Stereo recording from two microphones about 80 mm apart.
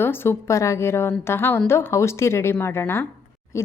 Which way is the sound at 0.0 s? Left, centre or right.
Left.